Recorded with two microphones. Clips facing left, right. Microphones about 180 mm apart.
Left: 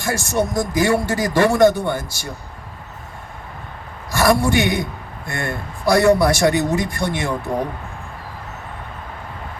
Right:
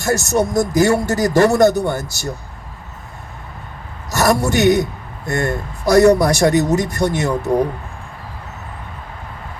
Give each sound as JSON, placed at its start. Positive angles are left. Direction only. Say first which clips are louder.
{"t": 0.0, "sound": "speech", "louder": "right 4 dB", "side_deg": -45}
{"t": 4.1, "sound": "speech", "louder": "even", "side_deg": -45}